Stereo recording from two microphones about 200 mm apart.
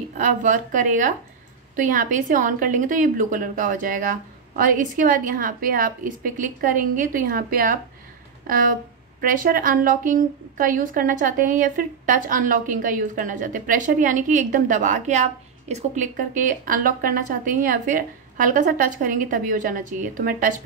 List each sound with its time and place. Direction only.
0.2 s a woman's voice: 40° right (ahead or behind)